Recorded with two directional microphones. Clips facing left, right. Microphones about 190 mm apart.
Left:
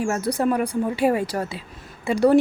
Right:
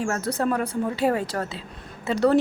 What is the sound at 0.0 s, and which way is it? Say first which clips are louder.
A woman's voice: left 3 dB; 10° left (ahead or behind).